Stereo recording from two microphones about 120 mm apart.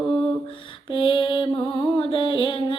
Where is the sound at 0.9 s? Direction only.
40° left (ahead or behind).